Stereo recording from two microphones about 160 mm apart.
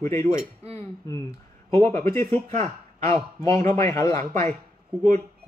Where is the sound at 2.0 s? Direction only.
20° left (ahead or behind).